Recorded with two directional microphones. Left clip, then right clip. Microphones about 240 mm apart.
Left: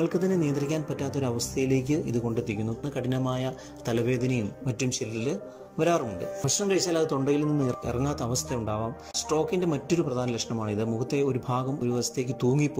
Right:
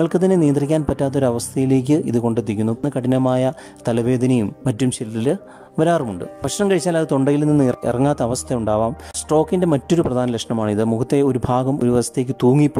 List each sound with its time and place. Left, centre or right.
0.0 s speech: right
6.4 s speech: right